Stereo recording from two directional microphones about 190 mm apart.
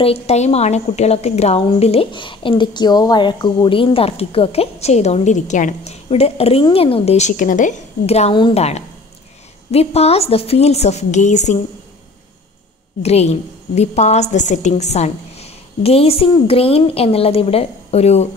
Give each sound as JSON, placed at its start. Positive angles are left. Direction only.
{"t": 0.0, "sound": "a woman's voice", "side_deg": 35}
{"t": 13.0, "sound": "a woman's voice", "side_deg": 35}